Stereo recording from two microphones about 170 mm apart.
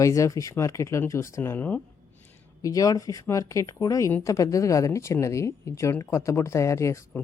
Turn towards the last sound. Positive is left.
turn(degrees=15)  # may be behind; listen again after turning